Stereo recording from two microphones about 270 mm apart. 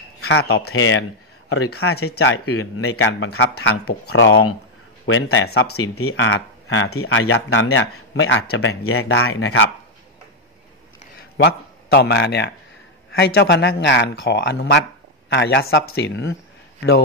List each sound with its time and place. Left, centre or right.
0.2 s a sound: left
0.7 s speech: left
11.1 s speech: left